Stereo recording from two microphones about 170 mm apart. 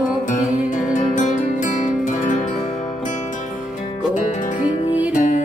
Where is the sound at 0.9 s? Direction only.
50° left (ahead or behind).